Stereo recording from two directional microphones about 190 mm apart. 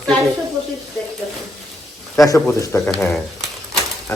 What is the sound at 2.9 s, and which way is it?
Speech, centre (ahead or behind).